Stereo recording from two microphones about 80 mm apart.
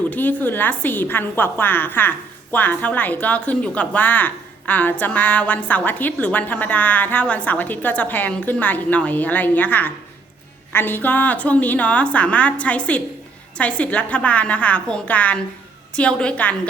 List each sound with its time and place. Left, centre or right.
0.1 s a woman's voice: left